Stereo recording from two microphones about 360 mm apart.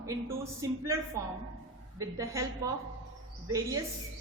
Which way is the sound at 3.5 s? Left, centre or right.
Centre.